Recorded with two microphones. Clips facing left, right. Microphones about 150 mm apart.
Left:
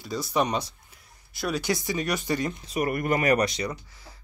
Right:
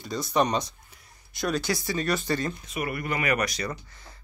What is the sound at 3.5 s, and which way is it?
Speech, 20° left (ahead or behind).